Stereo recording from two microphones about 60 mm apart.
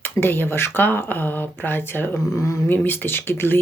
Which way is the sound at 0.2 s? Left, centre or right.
Left.